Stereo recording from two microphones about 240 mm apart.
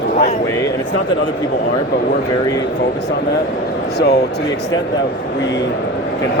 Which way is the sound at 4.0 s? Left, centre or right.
Left.